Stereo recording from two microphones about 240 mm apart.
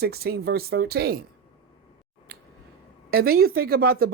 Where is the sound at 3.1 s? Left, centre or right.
Right.